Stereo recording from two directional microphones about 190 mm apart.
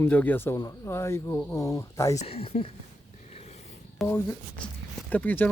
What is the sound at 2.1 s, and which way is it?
Speech, 30° left (ahead or behind).